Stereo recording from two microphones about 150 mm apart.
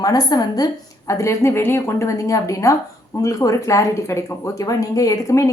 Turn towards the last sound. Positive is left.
turn(degrees=20)  # may be behind; listen again after turning